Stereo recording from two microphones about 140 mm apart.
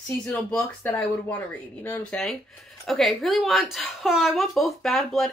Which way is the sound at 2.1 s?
Centre (ahead or behind).